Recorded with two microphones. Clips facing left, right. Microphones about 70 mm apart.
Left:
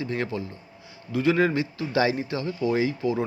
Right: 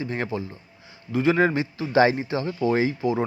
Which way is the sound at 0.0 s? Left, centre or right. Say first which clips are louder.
Right 1 dB; right.